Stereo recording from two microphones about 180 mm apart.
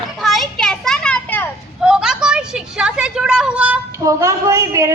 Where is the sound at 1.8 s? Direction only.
5° right (ahead or behind).